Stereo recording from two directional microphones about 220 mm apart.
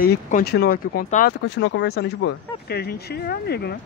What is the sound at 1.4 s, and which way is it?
Speech, 55° left (ahead or behind).